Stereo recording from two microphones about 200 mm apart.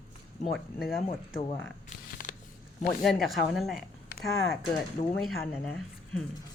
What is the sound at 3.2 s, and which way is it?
Speech, centre (ahead or behind).